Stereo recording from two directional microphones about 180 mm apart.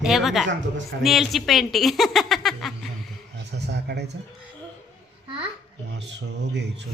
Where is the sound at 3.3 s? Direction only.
70° right (ahead or behind).